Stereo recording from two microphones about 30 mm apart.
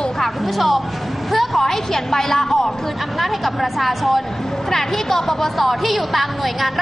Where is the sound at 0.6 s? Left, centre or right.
Centre.